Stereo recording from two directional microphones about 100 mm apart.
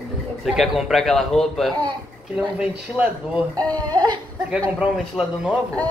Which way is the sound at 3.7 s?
45° right (ahead or behind).